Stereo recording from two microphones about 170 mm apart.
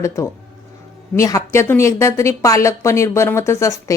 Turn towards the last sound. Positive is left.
turn(degrees=15)  # may be behind; listen again after turning